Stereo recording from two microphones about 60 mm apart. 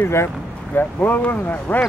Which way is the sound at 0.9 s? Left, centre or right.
Left.